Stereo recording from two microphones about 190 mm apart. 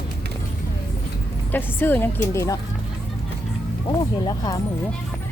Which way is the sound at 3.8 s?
20° left (ahead or behind).